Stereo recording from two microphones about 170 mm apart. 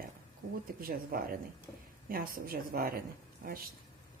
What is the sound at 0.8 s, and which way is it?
Speech, 60° right (ahead or behind).